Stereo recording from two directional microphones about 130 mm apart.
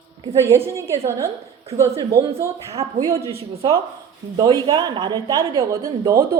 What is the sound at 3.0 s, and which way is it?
Speech, 30° right (ahead or behind).